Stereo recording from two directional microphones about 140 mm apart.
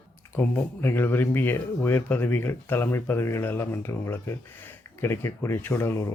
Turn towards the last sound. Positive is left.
turn(degrees=20)  # may be behind; listen again after turning